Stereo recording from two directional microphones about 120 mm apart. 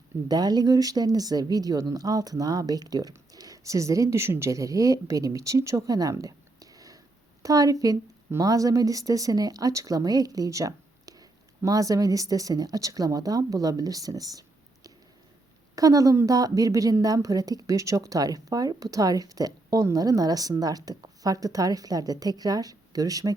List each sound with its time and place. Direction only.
0.3 s a woman's voice: 35° right (ahead or behind)
15.7 s a woman's voice: 30° right (ahead or behind)